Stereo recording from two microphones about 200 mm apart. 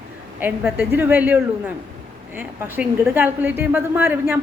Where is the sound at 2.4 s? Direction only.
10° right (ahead or behind).